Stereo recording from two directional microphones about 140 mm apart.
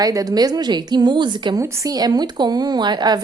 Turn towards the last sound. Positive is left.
turn(degrees=-30)  # may be behind; listen again after turning